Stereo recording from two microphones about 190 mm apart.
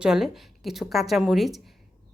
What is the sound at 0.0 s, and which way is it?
A woman's voice, centre (ahead or behind).